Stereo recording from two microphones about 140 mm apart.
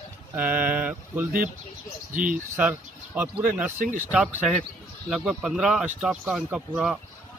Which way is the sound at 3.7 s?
75° right (ahead or behind).